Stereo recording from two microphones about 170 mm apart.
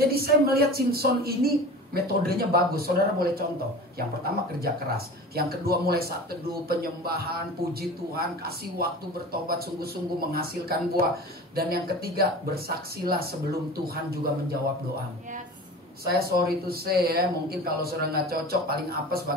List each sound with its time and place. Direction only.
0.0 s speech: 65° right (ahead or behind)
16.1 s speech: 65° right (ahead or behind)